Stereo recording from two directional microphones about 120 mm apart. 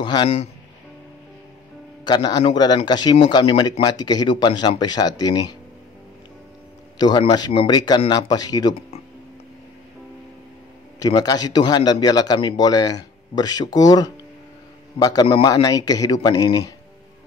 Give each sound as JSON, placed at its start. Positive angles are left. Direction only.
{"t": 0.0, "sound": "speech", "side_deg": 40}
{"t": 2.0, "sound": "speech", "side_deg": 35}
{"t": 7.0, "sound": "speech", "side_deg": 35}
{"t": 11.0, "sound": "a man's voice", "side_deg": 35}